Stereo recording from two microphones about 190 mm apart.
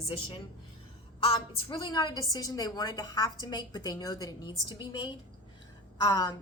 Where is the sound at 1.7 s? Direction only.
20° left (ahead or behind).